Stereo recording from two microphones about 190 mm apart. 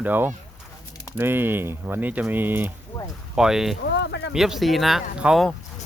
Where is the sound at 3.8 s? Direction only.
65° left (ahead or behind).